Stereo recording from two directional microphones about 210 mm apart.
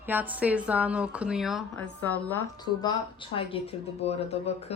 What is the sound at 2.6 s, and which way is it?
Speech, 20° left (ahead or behind).